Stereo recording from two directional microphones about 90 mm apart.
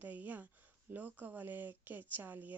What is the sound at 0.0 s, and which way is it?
Speech, 20° right (ahead or behind).